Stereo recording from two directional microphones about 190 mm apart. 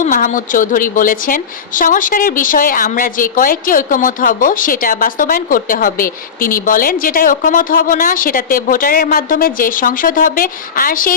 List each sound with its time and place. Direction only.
0.0 s a woman's voice: 45° left (ahead or behind)